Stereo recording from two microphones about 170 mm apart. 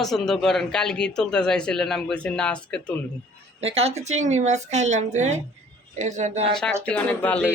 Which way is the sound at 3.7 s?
40° right (ahead or behind).